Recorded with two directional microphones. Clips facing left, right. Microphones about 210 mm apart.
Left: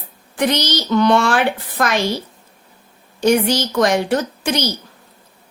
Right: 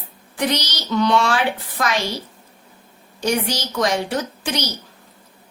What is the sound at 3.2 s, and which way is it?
Speech, 55° left (ahead or behind).